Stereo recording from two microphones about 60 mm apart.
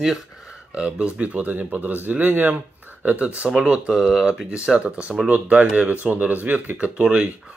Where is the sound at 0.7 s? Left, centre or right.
Right.